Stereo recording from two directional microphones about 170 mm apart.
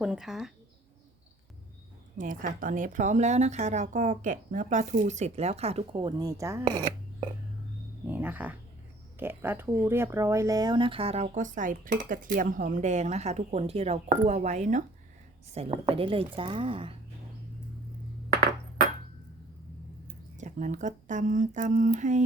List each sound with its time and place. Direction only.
0.0 s speech: 5° right (ahead or behind)
2.1 s speech: 50° right (ahead or behind); by 6.8 s 15° right (ahead or behind)
8.0 s speech: 10° right (ahead or behind); by 14.8 s 45° right (ahead or behind)
15.5 s speech: 35° right (ahead or behind)
20.4 s speech: 45° right (ahead or behind)